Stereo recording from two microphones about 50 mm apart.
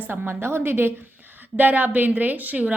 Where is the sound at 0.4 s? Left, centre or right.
Right.